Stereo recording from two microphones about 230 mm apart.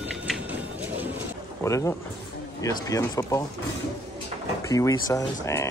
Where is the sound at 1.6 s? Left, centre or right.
Centre.